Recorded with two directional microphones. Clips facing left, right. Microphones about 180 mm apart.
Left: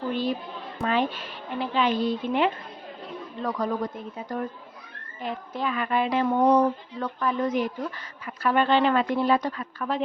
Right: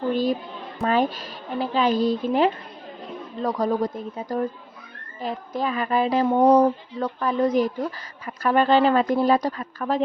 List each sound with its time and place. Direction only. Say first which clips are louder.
0.1 s speech: right 5 dB; 40° right (ahead or behind)